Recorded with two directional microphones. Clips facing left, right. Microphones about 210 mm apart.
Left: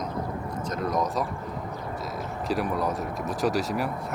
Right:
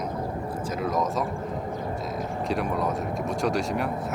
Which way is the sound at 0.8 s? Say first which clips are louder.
Even; centre (ahead or behind).